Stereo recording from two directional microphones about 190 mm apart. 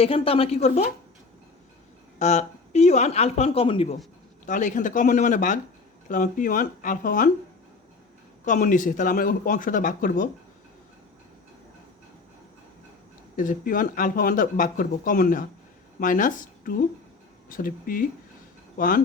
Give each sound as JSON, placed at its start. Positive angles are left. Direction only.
{"t": 0.0, "sound": "speech", "side_deg": 30}
{"t": 2.1, "sound": "speech", "side_deg": 35}
{"t": 4.4, "sound": "speech", "side_deg": 40}
{"t": 8.4, "sound": "speech", "side_deg": 40}
{"t": 13.3, "sound": "speech", "side_deg": 45}